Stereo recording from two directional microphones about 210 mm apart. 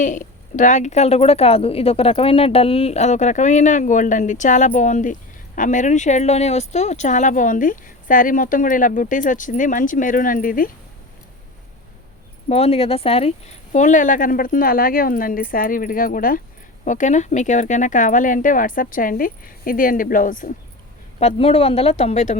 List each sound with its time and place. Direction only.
0.0 s a woman's voice: 35° left (ahead or behind)
12.5 s a woman's voice: 30° left (ahead or behind)
21.2 s speech: 30° left (ahead or behind)